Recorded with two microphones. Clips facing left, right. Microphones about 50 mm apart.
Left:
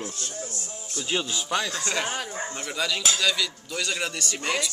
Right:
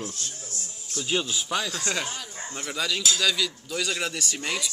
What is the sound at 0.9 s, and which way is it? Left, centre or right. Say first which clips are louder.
Speech: right 1 dB; centre.